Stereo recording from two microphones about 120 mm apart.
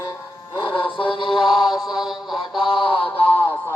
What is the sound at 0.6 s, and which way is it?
Music, 45° left (ahead or behind).